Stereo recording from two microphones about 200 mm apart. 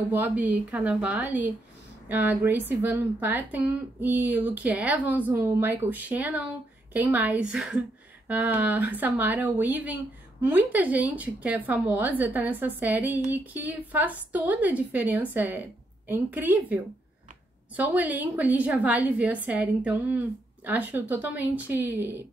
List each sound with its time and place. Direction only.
0.1 s a woman's voice: 10° right (ahead or behind)